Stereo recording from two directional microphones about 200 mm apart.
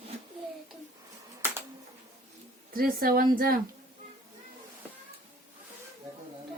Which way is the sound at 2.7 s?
45° right (ahead or behind).